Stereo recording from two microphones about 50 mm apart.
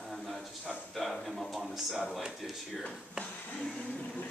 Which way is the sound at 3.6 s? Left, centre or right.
Centre.